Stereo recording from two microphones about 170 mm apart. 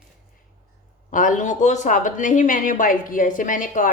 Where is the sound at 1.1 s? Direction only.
50° left (ahead or behind).